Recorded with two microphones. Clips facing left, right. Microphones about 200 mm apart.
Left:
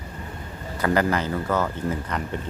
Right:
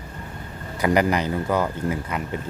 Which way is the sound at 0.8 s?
15° right (ahead or behind).